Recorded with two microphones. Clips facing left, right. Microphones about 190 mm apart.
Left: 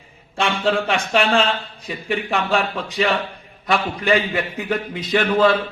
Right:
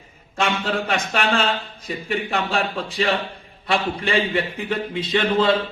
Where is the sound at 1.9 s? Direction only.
35° right (ahead or behind).